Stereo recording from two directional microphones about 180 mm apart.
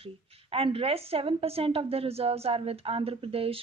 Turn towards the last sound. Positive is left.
turn(degrees=-30)  # may be behind; listen again after turning